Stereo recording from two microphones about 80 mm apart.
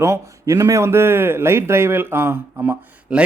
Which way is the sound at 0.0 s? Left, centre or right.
Right.